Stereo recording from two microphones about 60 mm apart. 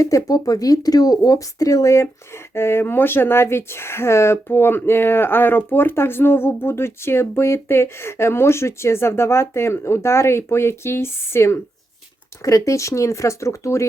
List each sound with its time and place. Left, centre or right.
0.3 s speech: left
2.3 s speech: left
12.4 s speech: left